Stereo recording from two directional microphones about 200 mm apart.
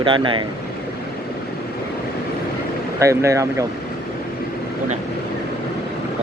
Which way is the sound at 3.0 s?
15° right (ahead or behind).